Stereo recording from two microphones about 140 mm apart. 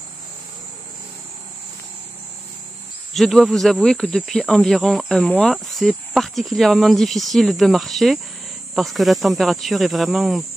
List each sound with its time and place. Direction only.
3.1 s speech: centre (ahead or behind)